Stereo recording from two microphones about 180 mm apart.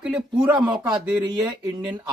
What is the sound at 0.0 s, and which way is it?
Speech, 5° right (ahead or behind).